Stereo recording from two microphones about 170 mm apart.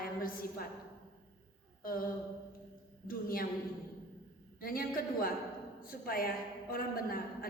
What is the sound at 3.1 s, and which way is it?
Speech, 60° left (ahead or behind).